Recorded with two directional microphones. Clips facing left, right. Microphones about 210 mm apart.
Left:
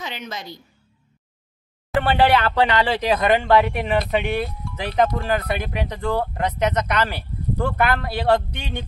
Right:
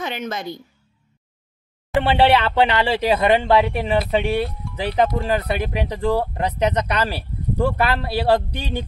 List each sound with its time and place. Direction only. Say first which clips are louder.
0.0 s a woman's voice: right 6 dB; 55° right (ahead or behind)
2.0 s speech: right 1 dB; 25° right (ahead or behind)